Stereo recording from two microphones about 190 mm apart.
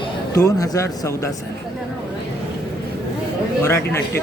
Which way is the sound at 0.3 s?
20° left (ahead or behind).